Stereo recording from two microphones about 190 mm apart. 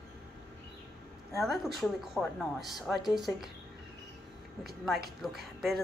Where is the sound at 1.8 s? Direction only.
Centre (ahead or behind).